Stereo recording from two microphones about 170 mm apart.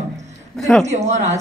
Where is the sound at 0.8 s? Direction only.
40° right (ahead or behind).